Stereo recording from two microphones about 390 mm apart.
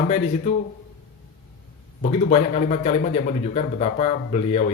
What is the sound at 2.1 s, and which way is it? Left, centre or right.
A man's voice, centre.